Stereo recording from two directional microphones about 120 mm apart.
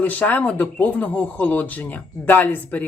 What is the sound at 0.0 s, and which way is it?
Speech, 15° left (ahead or behind).